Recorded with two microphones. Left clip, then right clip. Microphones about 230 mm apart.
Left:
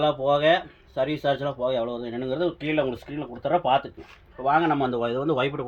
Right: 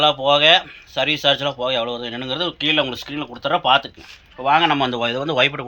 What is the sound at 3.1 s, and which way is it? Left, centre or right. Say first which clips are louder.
Speech: right 6 dB; right.